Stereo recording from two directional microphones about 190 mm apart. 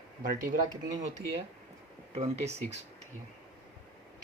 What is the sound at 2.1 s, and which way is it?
Speech, 35° right (ahead or behind).